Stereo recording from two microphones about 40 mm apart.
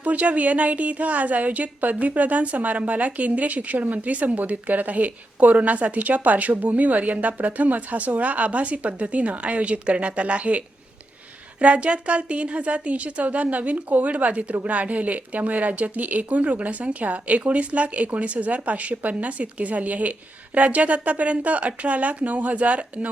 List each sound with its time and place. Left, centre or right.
0.0 s a woman's voice: right
11.6 s a woman's voice: right